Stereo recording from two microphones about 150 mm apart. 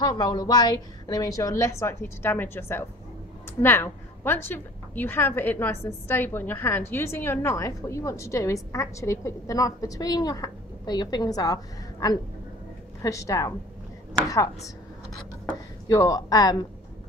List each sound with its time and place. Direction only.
0.0 s a woman's voice: 25° left (ahead or behind)
15.9 s a woman's voice: 25° left (ahead or behind)